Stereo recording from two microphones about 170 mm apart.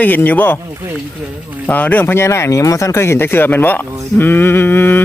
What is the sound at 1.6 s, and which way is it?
Speech, 10° left (ahead or behind).